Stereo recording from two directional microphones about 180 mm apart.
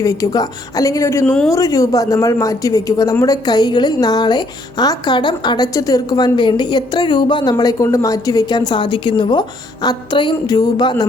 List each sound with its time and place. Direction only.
0.0 s a woman's voice: 20° left (ahead or behind)
1.5 s speech: 20° left (ahead or behind)